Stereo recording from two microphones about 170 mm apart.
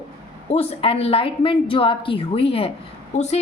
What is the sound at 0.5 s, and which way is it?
A woman's voice, 35° left (ahead or behind).